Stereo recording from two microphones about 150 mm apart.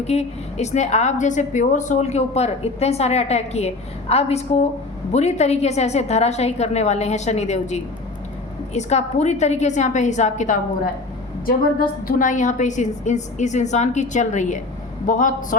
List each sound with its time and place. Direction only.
0.1 s a woman's voice: 45° left (ahead or behind)
11.4 s a woman's voice: 70° left (ahead or behind)